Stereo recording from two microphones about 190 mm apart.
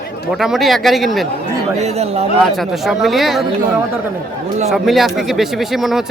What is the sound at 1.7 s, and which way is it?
Speech, 35° right (ahead or behind).